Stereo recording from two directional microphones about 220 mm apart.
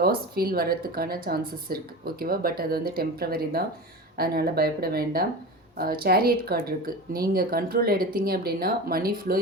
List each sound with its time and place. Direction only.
0.0 s speech: 45° right (ahead or behind)